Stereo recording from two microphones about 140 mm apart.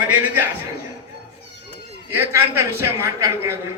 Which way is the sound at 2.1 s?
15° right (ahead or behind).